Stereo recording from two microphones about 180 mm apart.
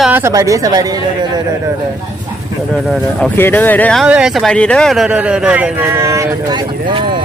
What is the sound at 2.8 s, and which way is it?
Speech, 10° left (ahead or behind).